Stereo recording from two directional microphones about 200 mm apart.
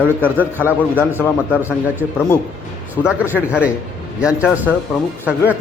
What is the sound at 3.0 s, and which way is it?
Speech, 5° right (ahead or behind).